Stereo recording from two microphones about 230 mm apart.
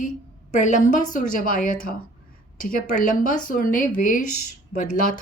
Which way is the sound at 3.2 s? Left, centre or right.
Left.